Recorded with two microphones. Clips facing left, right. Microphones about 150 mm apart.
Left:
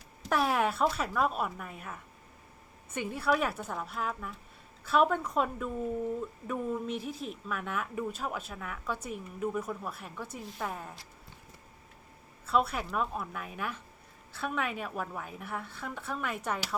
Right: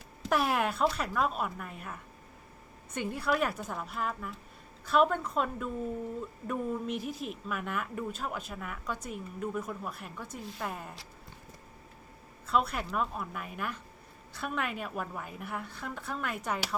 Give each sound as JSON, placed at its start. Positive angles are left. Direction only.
{"t": 0.3, "sound": "a woman's voice", "side_deg": -5}
{"t": 12.5, "sound": "a woman's voice", "side_deg": 0}